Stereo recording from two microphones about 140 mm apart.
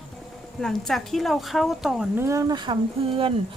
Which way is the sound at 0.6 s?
Centre (ahead or behind).